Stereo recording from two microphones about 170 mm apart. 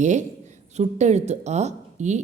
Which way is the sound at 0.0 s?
45° right (ahead or behind).